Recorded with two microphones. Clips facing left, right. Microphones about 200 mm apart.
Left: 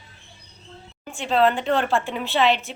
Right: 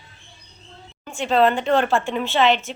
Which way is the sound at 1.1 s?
Centre (ahead or behind).